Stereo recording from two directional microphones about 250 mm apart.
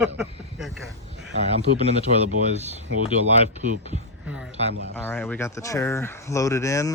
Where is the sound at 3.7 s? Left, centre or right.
Right.